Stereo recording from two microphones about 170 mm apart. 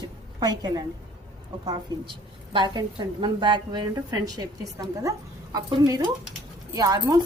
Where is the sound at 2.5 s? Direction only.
25° right (ahead or behind).